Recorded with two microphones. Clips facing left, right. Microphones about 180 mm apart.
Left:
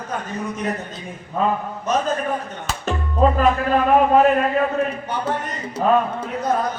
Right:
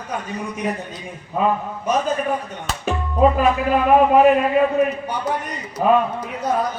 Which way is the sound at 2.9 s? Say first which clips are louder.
Right 2 dB; 10° right (ahead or behind).